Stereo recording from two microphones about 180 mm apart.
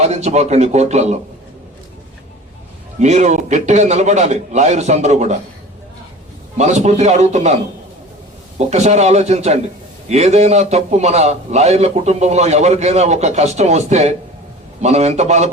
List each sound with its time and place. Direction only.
0.0 s a man's voice: 40° right (ahead or behind)
3.0 s a man's voice: 40° right (ahead or behind)
6.6 s a man's voice: 40° right (ahead or behind)